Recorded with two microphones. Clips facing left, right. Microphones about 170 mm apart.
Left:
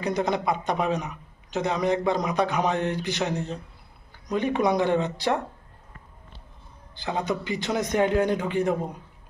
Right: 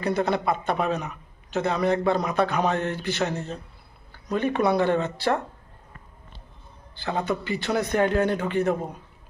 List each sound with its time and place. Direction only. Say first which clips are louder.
0.0 s a man's voice: right 1 dB; 15° left (ahead or behind)
7.0 s a man's voice: right 1 dB; 15° left (ahead or behind)